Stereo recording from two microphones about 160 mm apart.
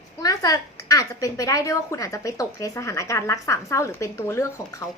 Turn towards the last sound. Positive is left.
turn(degrees=20)  # may be behind; listen again after turning